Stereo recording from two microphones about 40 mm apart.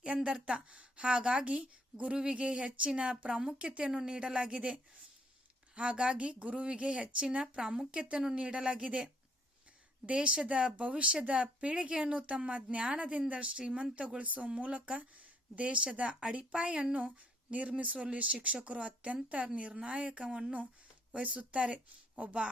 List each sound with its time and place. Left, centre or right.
0.0 s speech: right
10.1 s speech: right